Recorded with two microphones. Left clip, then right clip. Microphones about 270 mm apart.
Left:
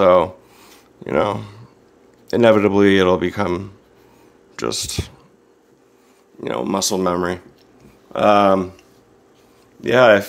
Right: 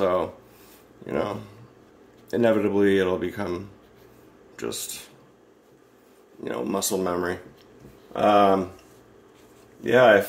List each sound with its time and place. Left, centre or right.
0.0 s a sound: left
1.0 s speech: left
6.4 s speech: left
9.8 s speech: left